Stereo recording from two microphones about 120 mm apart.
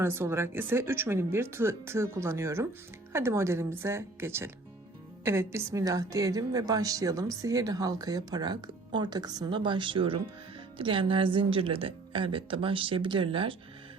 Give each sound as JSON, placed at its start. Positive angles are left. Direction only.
{"t": 0.0, "sound": "a woman's voice", "side_deg": -20}